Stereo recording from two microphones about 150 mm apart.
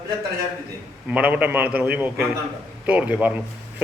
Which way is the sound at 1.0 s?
10° right (ahead or behind).